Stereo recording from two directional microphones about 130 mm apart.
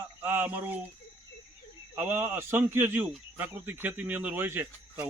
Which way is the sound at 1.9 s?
15° right (ahead or behind).